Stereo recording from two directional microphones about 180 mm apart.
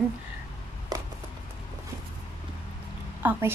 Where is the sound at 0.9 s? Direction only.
20° right (ahead or behind).